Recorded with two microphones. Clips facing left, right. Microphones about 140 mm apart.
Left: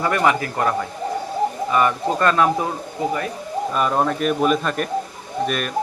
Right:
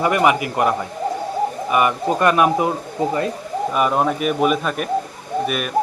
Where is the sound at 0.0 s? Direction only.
15° right (ahead or behind).